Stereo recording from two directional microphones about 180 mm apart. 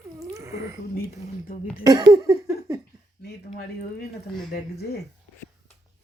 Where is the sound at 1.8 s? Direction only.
20° right (ahead or behind).